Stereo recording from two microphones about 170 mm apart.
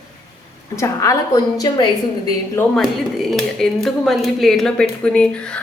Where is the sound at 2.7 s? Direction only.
Centre (ahead or behind).